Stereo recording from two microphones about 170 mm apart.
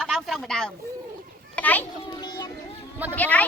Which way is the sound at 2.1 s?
25° left (ahead or behind).